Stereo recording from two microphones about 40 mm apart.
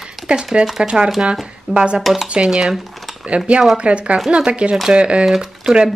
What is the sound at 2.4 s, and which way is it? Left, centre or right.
Speech, centre.